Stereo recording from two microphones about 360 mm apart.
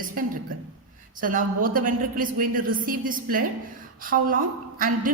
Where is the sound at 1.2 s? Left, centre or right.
Right.